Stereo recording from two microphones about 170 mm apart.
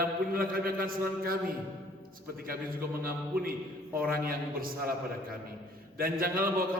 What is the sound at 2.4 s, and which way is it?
A man's voice, 60° right (ahead or behind).